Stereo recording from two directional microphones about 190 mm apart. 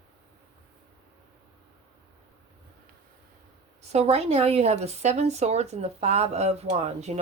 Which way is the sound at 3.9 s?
35° right (ahead or behind).